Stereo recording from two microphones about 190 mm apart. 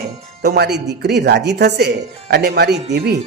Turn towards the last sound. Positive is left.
turn(degrees=-60)  # may be behind; listen again after turning